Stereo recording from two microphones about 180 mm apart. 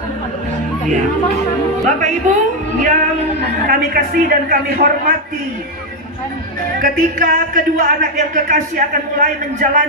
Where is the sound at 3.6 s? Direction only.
55° right (ahead or behind).